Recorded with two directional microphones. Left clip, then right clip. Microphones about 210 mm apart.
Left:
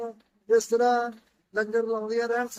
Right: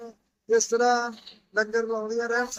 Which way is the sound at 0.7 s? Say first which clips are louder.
Even; 5° left (ahead or behind).